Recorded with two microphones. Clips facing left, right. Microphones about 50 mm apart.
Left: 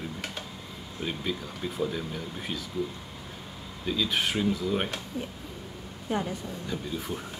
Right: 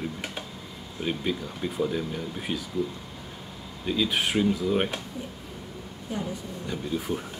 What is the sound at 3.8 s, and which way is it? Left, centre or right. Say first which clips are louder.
Speech: right 2 dB; centre.